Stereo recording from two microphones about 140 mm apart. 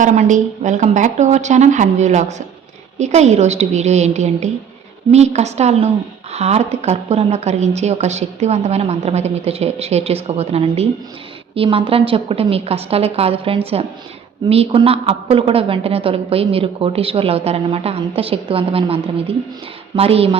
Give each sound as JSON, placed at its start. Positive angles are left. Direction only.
{"t": 0.0, "sound": "a woman's voice", "side_deg": -60}